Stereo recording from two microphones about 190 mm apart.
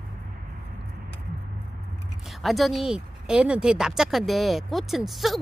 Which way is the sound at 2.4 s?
Centre (ahead or behind).